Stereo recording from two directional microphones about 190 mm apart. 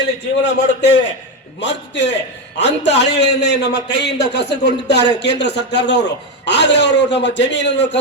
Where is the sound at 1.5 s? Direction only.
65° left (ahead or behind).